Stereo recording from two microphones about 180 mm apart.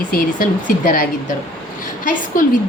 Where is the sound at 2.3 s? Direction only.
50° left (ahead or behind).